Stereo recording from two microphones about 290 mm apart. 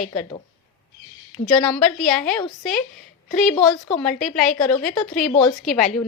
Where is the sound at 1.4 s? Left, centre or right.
Centre.